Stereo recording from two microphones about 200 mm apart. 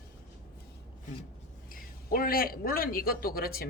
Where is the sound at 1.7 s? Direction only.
45° left (ahead or behind).